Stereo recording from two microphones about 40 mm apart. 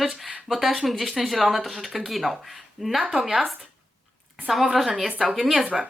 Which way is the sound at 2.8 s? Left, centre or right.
Centre.